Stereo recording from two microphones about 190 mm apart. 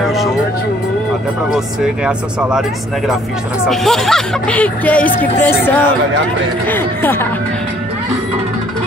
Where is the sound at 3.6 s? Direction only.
Centre (ahead or behind).